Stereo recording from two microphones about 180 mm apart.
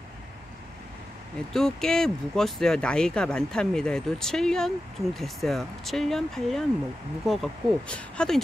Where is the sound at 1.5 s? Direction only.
5° left (ahead or behind).